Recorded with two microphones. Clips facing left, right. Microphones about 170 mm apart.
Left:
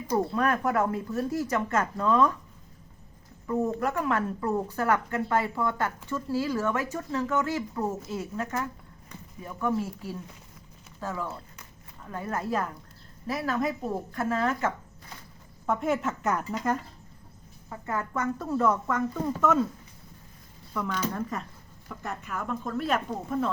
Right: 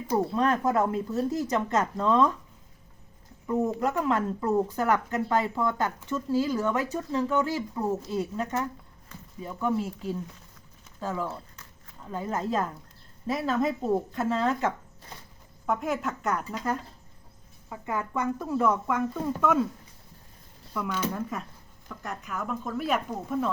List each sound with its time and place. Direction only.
0.3 s speech: 25° right (ahead or behind)
3.8 s speech: 20° right (ahead or behind)
15.6 s speech: centre (ahead or behind)
17.7 s speech: 15° right (ahead or behind)
20.7 s speech: 5° right (ahead or behind)